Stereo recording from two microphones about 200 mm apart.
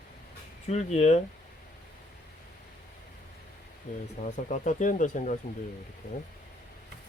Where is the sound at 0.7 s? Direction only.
35° left (ahead or behind).